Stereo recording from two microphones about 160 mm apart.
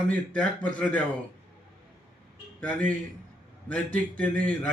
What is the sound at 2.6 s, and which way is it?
A man's voice, 10° left (ahead or behind).